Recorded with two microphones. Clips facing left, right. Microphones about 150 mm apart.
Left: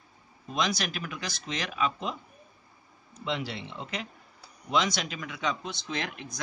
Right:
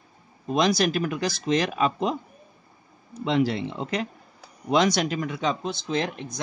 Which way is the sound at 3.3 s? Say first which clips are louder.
Right 10 dB; 45° right (ahead or behind).